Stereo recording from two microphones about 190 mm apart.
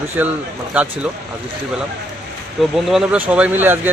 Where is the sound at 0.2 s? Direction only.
10° right (ahead or behind).